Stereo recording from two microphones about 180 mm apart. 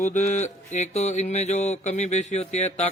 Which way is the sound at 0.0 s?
45° left (ahead or behind).